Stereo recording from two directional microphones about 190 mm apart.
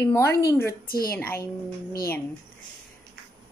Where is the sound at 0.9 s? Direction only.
50° left (ahead or behind).